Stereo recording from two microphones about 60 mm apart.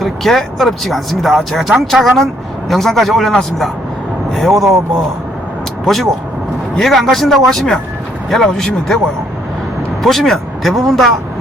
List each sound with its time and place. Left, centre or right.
0.0 s speech: centre
5.8 s speech: centre
10.0 s speech: centre